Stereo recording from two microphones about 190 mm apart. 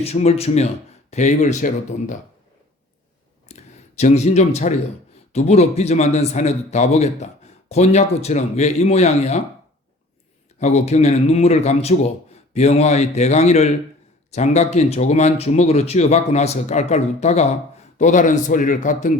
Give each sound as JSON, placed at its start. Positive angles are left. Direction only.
{"t": 0.0, "sound": "speech", "side_deg": 35}
{"t": 3.5, "sound": "a sound", "side_deg": 35}
{"t": 5.3, "sound": "speech", "side_deg": 35}
{"t": 10.6, "sound": "speech", "side_deg": 35}